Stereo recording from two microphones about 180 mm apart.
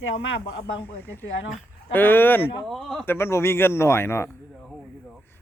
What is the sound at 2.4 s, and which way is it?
Speech, centre (ahead or behind).